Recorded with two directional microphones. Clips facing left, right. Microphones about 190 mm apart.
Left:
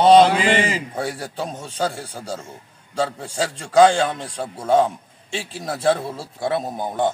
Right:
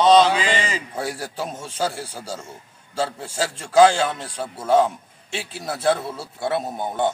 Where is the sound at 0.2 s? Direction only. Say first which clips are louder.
Left 3 dB; 55° left (ahead or behind).